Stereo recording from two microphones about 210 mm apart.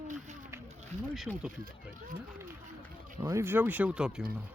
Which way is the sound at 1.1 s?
Centre (ahead or behind).